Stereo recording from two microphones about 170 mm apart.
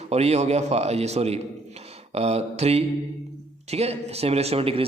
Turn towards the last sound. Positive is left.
turn(degrees=-35)  # may be behind; listen again after turning